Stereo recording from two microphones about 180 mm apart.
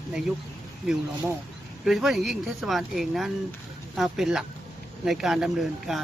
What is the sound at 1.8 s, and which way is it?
Speech, centre (ahead or behind).